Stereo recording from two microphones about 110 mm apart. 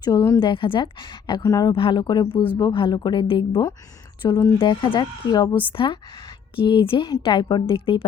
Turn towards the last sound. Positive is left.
turn(degrees=55)  # may be behind; listen again after turning